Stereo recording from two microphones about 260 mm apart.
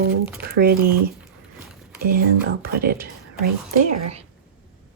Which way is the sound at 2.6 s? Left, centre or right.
Right.